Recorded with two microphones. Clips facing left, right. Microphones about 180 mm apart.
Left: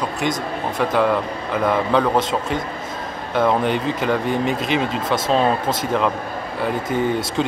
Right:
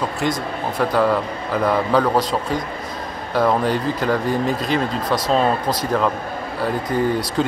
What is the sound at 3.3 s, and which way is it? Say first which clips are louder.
Speech: even; centre (ahead or behind).